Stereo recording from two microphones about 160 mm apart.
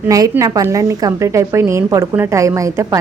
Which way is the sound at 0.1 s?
20° right (ahead or behind).